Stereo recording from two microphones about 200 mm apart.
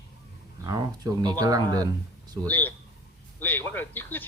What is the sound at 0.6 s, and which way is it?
Speech, 20° right (ahead or behind).